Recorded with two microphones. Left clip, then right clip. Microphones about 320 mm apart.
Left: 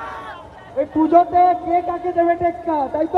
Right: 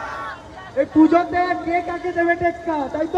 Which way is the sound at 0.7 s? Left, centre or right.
Centre.